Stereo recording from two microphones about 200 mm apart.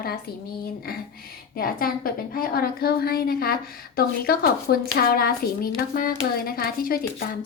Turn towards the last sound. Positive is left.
turn(degrees=50)  # may be behind; listen again after turning